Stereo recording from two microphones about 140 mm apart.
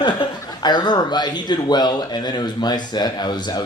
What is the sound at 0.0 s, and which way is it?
A man's voice, 30° left (ahead or behind).